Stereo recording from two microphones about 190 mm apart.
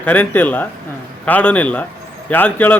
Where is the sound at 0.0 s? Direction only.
10° left (ahead or behind).